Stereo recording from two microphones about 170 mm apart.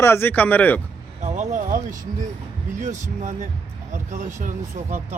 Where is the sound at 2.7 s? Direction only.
45° right (ahead or behind).